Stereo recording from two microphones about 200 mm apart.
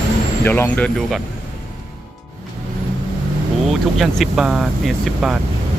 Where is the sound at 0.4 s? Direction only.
10° left (ahead or behind).